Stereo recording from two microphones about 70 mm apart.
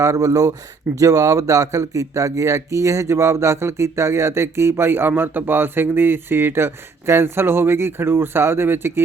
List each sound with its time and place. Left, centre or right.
0.0 s speech: right